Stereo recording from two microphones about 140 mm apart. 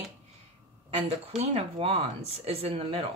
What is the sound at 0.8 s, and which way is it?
Speech, 45° right (ahead or behind).